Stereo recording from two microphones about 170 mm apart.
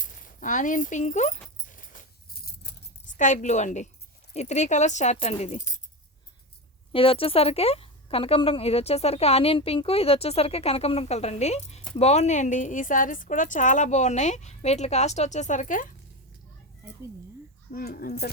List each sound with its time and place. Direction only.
0.0 s dog: 50° left (ahead or behind)
3.1 s a woman's voice: 45° left (ahead or behind)
6.9 s a woman's voice: 35° left (ahead or behind); by 15.9 s 50° left (ahead or behind)
17.7 s speech: 60° left (ahead or behind)